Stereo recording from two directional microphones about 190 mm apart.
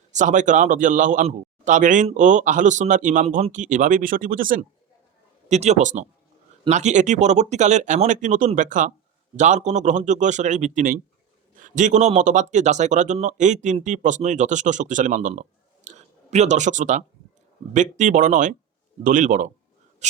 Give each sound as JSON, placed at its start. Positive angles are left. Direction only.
{"t": 0.1, "sound": "a man's voice", "side_deg": -40}
{"t": 5.5, "sound": "a man's voice", "side_deg": -35}
{"t": 20.0, "sound": "wheeze", "side_deg": -35}